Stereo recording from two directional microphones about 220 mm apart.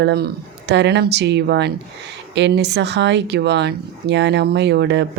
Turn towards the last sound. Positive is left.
turn(degrees=-50)  # may be behind; listen again after turning